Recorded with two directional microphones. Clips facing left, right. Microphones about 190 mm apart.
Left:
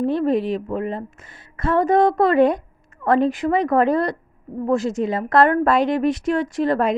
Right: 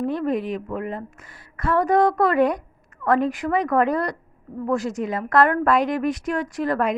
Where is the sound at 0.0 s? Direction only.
30° left (ahead or behind).